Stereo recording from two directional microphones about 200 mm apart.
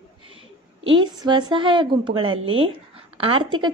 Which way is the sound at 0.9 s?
25° right (ahead or behind).